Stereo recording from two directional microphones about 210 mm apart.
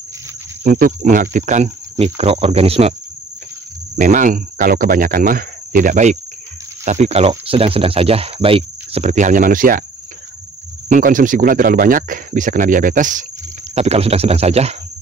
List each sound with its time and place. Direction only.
0.7 s speech: 40° right (ahead or behind)
3.9 s speech: 35° right (ahead or behind)
10.9 s speech: 40° right (ahead or behind)